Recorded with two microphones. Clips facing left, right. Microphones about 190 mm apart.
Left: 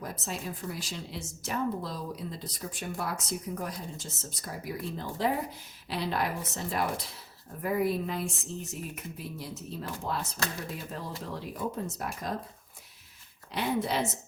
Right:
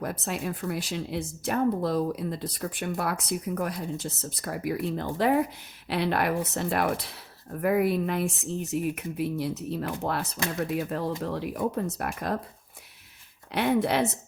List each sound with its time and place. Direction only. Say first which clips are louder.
0.0 s speech: right 6 dB; 65° right (ahead or behind)
13.5 s speech: right 6 dB; 65° right (ahead or behind)